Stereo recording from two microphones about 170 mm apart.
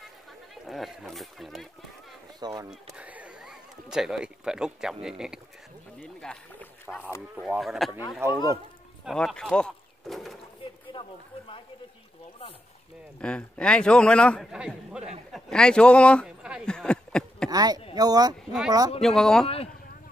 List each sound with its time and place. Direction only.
0.7 s a man's voice: centre (ahead or behind)
2.4 s speech: 20° right (ahead or behind)
2.7 s speech: 10° right (ahead or behind)
5.9 s speech: 10° left (ahead or behind)
7.3 s a man's voice: 5° right (ahead or behind)
8.2 s speech: 15° right (ahead or behind)
9.0 s a sound: 5° left (ahead or behind)
10.6 s a sound: 30° left (ahead or behind)
13.2 s a man's voice: 5° left (ahead or behind)
16.3 s speech: 5° right (ahead or behind)
17.5 s speech: 20° right (ahead or behind)
18.9 s a man's voice: 5° left (ahead or behind)
19.4 s speech: 35° left (ahead or behind)